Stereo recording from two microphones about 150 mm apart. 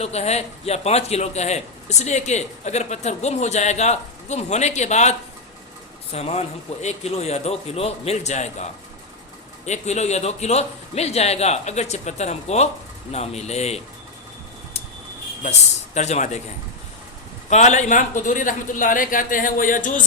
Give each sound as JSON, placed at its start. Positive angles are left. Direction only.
{"t": 0.0, "sound": "a man's voice", "side_deg": 45}
{"t": 9.6, "sound": "a man's voice", "side_deg": 50}
{"t": 16.0, "sound": "a man's voice", "side_deg": 50}
{"t": 17.5, "sound": "a man's voice", "side_deg": 50}